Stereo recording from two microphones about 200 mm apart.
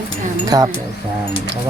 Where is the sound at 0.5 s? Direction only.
20° right (ahead or behind).